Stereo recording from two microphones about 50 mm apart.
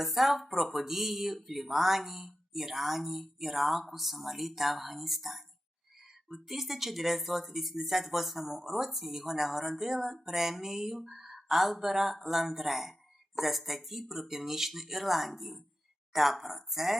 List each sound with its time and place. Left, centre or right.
0.0 s speech: centre